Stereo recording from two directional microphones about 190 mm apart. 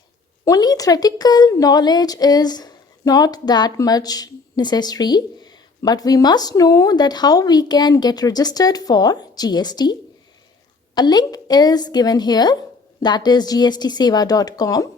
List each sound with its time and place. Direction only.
0.4 s a woman's voice: 20° left (ahead or behind)